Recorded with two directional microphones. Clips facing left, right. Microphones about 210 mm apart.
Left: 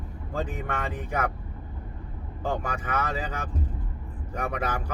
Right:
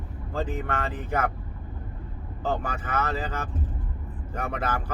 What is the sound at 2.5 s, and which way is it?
Speech, 10° left (ahead or behind).